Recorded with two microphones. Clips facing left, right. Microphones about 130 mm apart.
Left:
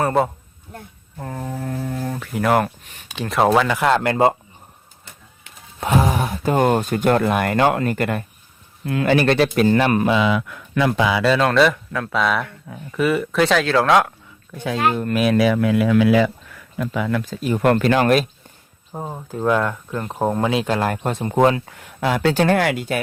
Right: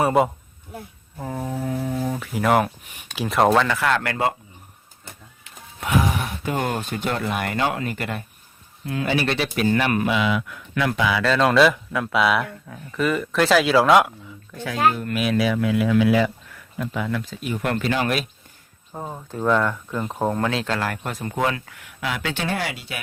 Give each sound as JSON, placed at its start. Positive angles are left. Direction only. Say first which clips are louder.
{"t": 0.0, "sound": "speech", "louder": "even", "side_deg": -5}
{"t": 3.2, "sound": "speech", "louder": "left 1 dB", "side_deg": 0}
{"t": 3.8, "sound": "speech", "louder": "left 5 dB", "side_deg": 25}
{"t": 5.8, "sound": "speech", "louder": "left 4 dB", "side_deg": 35}
{"t": 7.1, "sound": "speech", "louder": "left 8 dB", "side_deg": 55}
{"t": 8.8, "sound": "speech", "louder": "left 6 dB", "side_deg": 65}
{"t": 10.8, "sound": "speech", "louder": "left 3 dB", "side_deg": 25}
{"t": 11.3, "sound": "speech", "louder": "even", "side_deg": 0}
{"t": 12.6, "sound": "speech", "louder": "left 3 dB", "side_deg": 10}
{"t": 14.5, "sound": "speech", "louder": "left 5 dB", "side_deg": 20}
{"t": 14.9, "sound": "speech", "louder": "left 5 dB", "side_deg": 40}
{"t": 17.2, "sound": "speech", "louder": "left 8 dB", "side_deg": 45}
{"t": 18.9, "sound": "speech", "louder": "left 2 dB", "side_deg": 10}
{"t": 22.4, "sound": "speech", "louder": "left 9 dB", "side_deg": 55}